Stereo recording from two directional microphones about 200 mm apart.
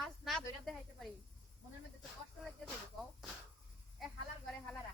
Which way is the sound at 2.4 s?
5° right (ahead or behind).